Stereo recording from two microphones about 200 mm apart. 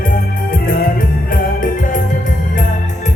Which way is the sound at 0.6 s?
45° left (ahead or behind).